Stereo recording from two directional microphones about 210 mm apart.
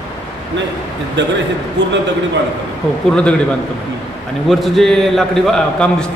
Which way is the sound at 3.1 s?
5° left (ahead or behind).